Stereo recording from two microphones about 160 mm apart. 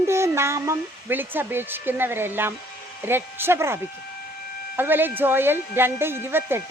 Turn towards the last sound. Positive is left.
turn(degrees=-15)  # may be behind; listen again after turning